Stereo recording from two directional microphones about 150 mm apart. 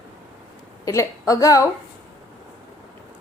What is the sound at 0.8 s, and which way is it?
Speech, 20° left (ahead or behind).